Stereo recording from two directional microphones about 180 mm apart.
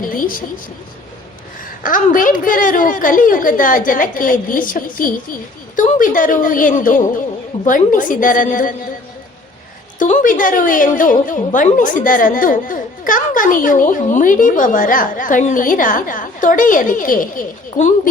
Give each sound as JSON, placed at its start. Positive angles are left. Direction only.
{"t": 0.0, "sound": "a woman's voice", "side_deg": 50}
{"t": 1.8, "sound": "a woman's voice", "side_deg": 50}
{"t": 10.0, "sound": "a woman's voice", "side_deg": 45}